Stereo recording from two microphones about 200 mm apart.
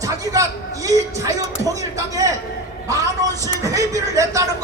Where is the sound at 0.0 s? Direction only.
15° right (ahead or behind).